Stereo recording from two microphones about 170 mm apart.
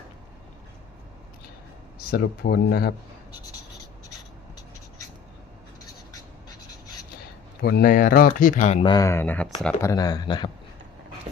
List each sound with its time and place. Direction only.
2.0 s speech: 60° left (ahead or behind)
7.6 s speech: 60° left (ahead or behind)
8.8 s speech: 25° left (ahead or behind)
9.8 s speech: 20° left (ahead or behind)